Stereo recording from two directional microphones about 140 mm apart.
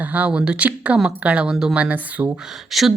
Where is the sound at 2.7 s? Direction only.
Centre (ahead or behind).